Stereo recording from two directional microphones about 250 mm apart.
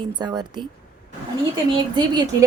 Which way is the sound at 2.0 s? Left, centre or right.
Centre.